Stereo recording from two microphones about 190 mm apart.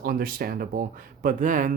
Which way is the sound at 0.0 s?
50° right (ahead or behind).